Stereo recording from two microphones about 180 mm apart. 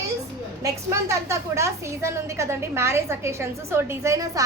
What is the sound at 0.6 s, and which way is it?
A woman's voice, 15° right (ahead or behind).